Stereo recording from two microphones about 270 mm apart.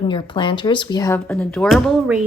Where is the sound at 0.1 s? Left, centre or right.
Centre.